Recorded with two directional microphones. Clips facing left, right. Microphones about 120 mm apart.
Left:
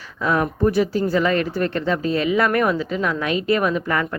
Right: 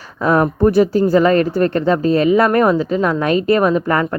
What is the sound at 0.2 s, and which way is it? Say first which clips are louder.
Speech: right 6 dB; 40° right (ahead or behind).